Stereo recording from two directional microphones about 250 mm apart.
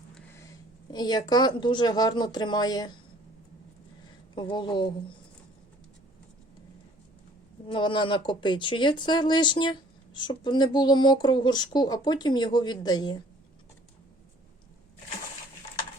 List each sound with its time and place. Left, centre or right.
0.9 s speech: centre
4.4 s speech: centre
7.7 s speech: centre